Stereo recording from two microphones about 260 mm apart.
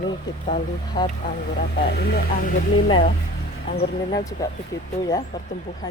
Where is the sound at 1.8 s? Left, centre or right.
Left.